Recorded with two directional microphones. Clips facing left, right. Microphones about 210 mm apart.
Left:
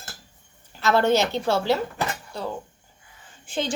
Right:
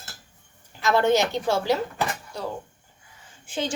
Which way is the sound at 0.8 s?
15° right (ahead or behind).